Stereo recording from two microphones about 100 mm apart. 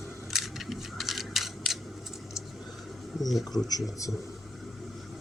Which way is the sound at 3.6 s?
40° left (ahead or behind).